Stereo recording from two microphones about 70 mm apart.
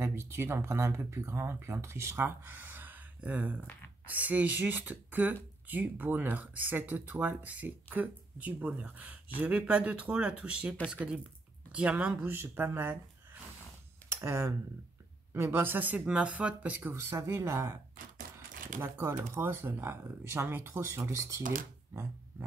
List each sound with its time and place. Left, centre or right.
0.0 s speech: right; by 12.3 s centre
12.3 s speech: right
14.0 s a sound: right
15.3 s speech: right
15.6 s speech: right
16.8 s speech: right
21.9 s speech: right